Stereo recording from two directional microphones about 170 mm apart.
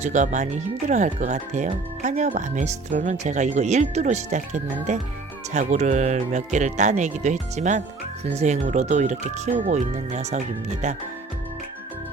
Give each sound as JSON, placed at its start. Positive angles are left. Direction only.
{"t": 0.0, "sound": "speech", "side_deg": -45}